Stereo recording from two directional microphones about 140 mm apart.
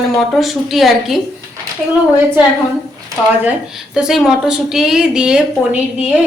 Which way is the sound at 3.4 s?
5° right (ahead or behind).